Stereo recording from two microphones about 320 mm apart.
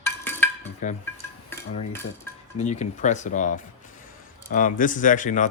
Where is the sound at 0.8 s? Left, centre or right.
Left.